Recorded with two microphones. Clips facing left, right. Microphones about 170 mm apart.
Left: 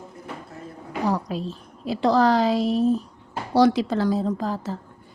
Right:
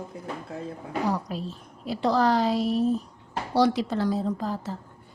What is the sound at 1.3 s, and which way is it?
A woman's voice, 90° left.